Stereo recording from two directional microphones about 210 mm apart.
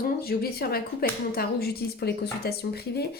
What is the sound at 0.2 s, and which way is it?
A woman's voice, 45° left (ahead or behind).